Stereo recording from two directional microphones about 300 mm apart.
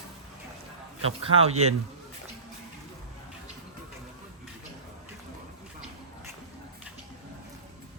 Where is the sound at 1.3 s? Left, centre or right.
Centre.